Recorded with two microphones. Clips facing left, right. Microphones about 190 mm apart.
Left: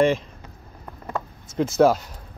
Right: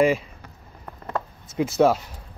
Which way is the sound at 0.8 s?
5° left (ahead or behind).